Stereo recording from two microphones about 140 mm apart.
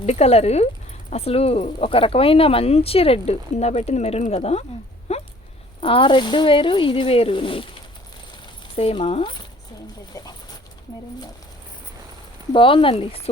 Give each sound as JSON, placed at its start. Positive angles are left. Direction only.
{"t": 0.0, "sound": "speech", "side_deg": 50}
{"t": 5.1, "sound": "a sound", "side_deg": 50}
{"t": 5.8, "sound": "speech", "side_deg": 40}
{"t": 8.7, "sound": "speech", "side_deg": 45}
{"t": 12.5, "sound": "speech", "side_deg": 40}